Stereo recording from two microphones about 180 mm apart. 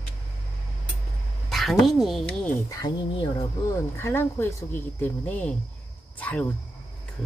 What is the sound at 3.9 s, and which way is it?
Speech, 15° left (ahead or behind).